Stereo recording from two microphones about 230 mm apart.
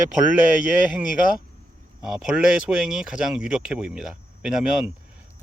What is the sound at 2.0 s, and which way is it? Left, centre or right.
Speech, centre.